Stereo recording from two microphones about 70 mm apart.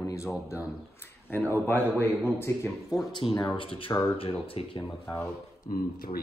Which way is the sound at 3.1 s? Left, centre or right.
Left.